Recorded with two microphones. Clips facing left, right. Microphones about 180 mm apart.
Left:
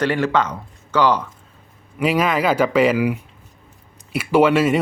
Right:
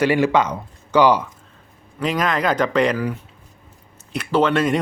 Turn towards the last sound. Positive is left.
turn(degrees=5)  # may be behind; listen again after turning